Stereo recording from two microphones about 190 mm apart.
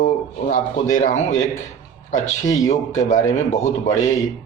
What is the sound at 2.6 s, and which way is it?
Speech, 40° left (ahead or behind).